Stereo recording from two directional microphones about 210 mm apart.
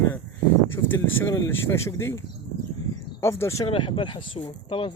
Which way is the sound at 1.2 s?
15° left (ahead or behind).